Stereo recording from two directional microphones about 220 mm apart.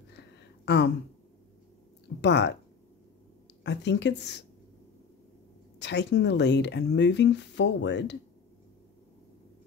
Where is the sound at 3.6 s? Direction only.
50° left (ahead or behind).